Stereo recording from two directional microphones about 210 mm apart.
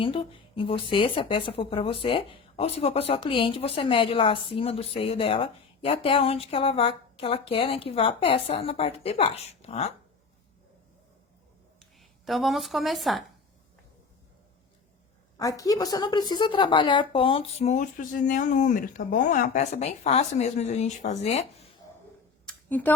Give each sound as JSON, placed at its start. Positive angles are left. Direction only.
{"t": 0.0, "sound": "speech", "side_deg": 25}
{"t": 11.8, "sound": "speech", "side_deg": 0}
{"t": 15.4, "sound": "a woman's voice", "side_deg": 15}
{"t": 22.4, "sound": "a sound", "side_deg": 10}